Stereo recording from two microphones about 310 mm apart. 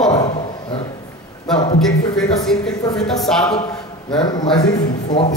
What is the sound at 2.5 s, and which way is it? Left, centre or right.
Speech, centre.